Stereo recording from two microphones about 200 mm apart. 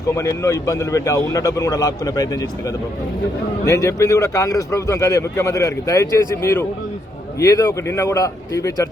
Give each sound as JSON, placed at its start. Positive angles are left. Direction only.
{"t": 0.1, "sound": "a man's voice", "side_deg": 15}